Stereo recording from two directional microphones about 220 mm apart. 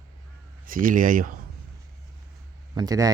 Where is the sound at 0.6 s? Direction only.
40° right (ahead or behind).